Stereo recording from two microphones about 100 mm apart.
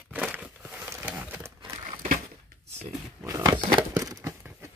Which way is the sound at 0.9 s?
20° right (ahead or behind).